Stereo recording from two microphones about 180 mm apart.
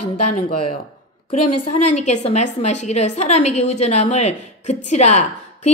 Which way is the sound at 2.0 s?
40° left (ahead or behind).